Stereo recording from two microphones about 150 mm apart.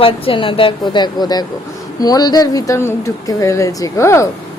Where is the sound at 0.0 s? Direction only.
35° left (ahead or behind); by 4.3 s 20° left (ahead or behind).